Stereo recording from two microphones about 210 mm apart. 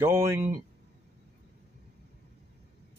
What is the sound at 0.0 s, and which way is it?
Speech, 15° right (ahead or behind).